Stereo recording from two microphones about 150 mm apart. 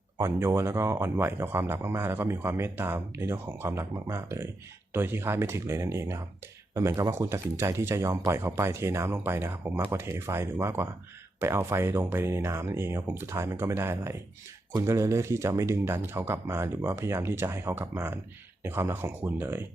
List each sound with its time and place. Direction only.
0.2 s speech: 15° right (ahead or behind)